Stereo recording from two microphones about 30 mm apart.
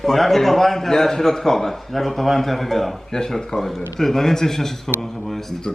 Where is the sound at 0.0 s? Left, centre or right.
Centre.